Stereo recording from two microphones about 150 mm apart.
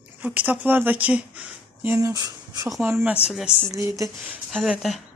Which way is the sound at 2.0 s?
25° right (ahead or behind).